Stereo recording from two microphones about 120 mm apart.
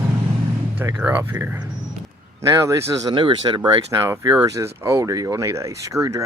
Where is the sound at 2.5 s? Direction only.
25° right (ahead or behind).